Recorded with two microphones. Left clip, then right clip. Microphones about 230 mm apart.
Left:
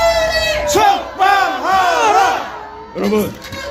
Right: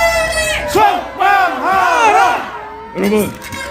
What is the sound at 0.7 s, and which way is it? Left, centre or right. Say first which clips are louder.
Battle cry: right 1 dB; centre.